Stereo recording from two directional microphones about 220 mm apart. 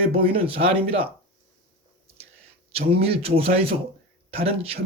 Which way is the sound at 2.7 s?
25° right (ahead or behind).